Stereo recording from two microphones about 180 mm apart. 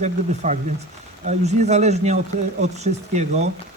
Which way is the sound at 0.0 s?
40° right (ahead or behind).